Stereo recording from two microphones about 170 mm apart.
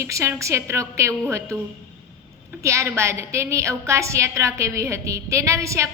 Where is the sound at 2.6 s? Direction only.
15° right (ahead or behind).